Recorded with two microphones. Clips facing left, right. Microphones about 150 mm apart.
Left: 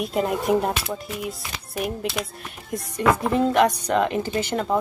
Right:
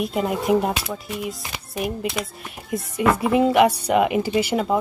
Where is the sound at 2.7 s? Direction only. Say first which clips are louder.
Right 1 dB; 5° right (ahead or behind).